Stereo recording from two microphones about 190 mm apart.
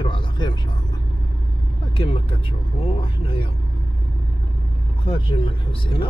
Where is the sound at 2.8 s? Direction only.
30° left (ahead or behind).